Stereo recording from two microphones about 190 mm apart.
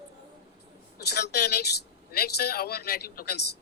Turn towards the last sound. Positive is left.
turn(degrees=60)  # may be behind; listen again after turning